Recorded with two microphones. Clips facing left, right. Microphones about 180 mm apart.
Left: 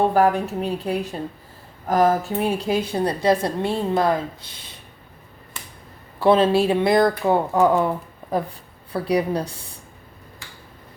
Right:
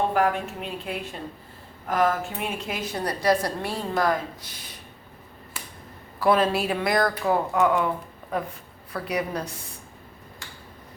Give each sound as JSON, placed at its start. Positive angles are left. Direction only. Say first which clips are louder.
{"t": 0.1, "sound": "a woman's voice", "louder": "left 5 dB", "side_deg": 35}
{"t": 6.1, "sound": "a woman's voice", "louder": "left 5 dB", "side_deg": 25}